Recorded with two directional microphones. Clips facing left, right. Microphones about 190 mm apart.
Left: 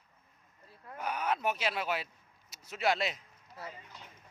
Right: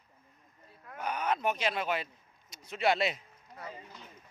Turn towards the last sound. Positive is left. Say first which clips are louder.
# right 3 dB
turn(degrees=0)  # may be behind; listen again after turning